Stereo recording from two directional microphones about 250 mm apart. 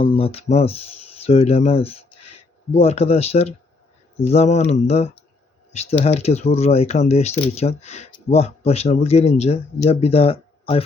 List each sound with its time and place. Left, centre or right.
0.0 s speech: left